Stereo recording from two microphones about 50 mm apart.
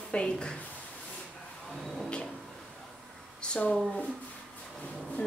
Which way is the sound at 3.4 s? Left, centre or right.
Centre.